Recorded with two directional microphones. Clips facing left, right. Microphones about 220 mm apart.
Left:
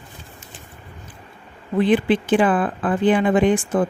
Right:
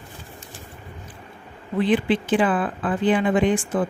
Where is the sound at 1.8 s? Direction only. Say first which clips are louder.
Left 3 dB; 50° left (ahead or behind).